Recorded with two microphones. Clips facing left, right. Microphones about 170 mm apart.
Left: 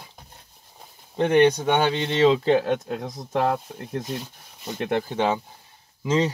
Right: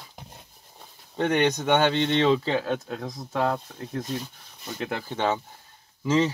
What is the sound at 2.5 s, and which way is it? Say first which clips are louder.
Speech: left 4 dB; 20° left (ahead or behind).